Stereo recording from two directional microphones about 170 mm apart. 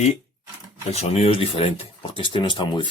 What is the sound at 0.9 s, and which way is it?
Speech, 40° left (ahead or behind).